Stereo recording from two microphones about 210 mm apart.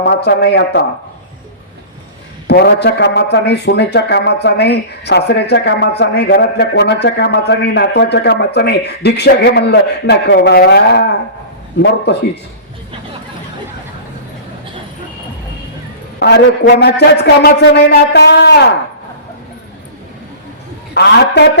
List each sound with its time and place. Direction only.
0.0 s a man's voice: 55° left (ahead or behind)
2.5 s a man's voice: 55° left (ahead or behind)
16.2 s a man's voice: 50° left (ahead or behind)
20.9 s a man's voice: 55° left (ahead or behind)